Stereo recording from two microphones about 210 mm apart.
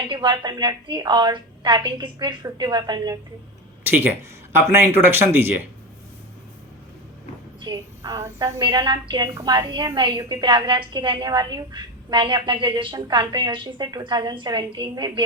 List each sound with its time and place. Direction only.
0.1 s a woman's voice: 20° right (ahead or behind)
7.6 s a woman's voice: 20° right (ahead or behind)